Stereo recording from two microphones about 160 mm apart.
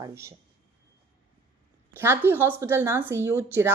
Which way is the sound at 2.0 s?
15° right (ahead or behind).